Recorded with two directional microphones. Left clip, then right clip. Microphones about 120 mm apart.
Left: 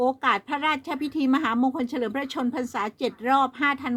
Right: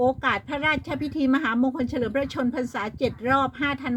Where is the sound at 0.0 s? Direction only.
55° left (ahead or behind).